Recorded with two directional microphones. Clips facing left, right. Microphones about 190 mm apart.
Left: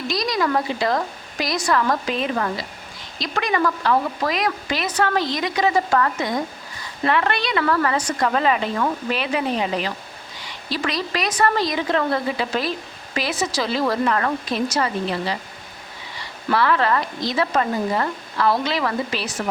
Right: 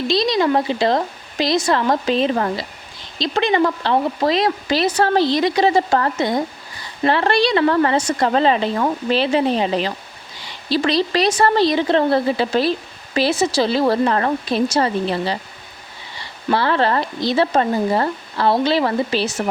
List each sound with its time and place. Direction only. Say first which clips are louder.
0.1 s speech: right 4 dB; 25° right (ahead or behind)